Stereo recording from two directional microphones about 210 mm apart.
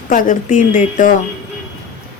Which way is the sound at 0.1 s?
40° left (ahead or behind).